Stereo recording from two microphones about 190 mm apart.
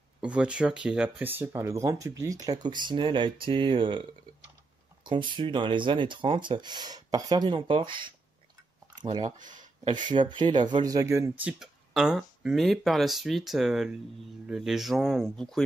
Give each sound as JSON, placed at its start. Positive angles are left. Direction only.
{"t": 0.2, "sound": "speech", "side_deg": -5}
{"t": 8.9, "sound": "a sound", "side_deg": -25}
{"t": 9.4, "sound": "speech", "side_deg": -45}
{"t": 9.8, "sound": "speech", "side_deg": -25}